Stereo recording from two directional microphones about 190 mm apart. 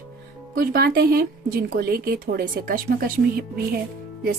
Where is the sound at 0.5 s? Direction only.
50° right (ahead or behind).